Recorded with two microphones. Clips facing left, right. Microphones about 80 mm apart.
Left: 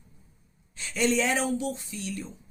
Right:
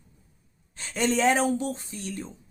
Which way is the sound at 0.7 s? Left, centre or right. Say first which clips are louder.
Even; right.